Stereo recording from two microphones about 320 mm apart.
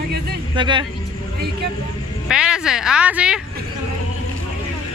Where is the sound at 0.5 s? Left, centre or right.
Centre.